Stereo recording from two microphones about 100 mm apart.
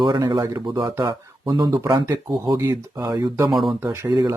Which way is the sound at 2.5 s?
30° right (ahead or behind).